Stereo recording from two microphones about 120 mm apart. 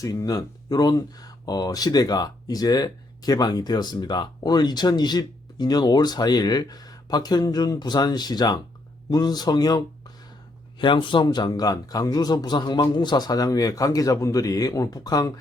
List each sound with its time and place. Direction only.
0.0 s speech: 30° left (ahead or behind)